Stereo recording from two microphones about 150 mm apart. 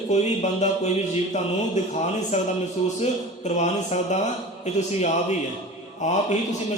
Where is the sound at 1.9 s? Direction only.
50° left (ahead or behind).